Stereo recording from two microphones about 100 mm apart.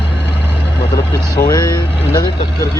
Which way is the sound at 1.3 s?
40° left (ahead or behind).